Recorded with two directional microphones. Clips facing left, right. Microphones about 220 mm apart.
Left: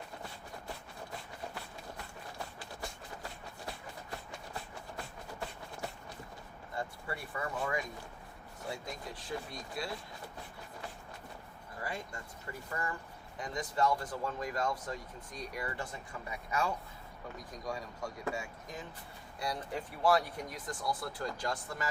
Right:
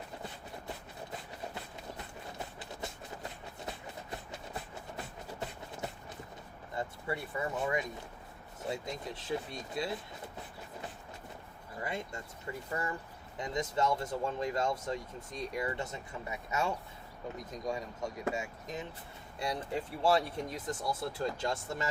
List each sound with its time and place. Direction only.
2.8 s a sound: 20° right (ahead or behind)
3.7 s train: 20° right (ahead or behind)
6.7 s speech: 20° right (ahead or behind)
11.8 s speech: 20° right (ahead or behind)